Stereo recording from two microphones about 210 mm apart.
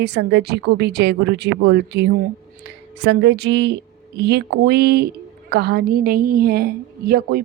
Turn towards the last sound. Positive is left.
turn(degrees=-45)  # may be behind; listen again after turning